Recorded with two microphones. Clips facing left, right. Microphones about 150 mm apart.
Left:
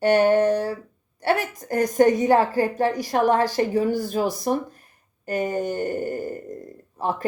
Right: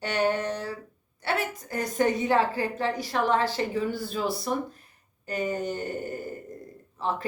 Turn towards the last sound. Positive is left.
turn(degrees=45)  # may be behind; listen again after turning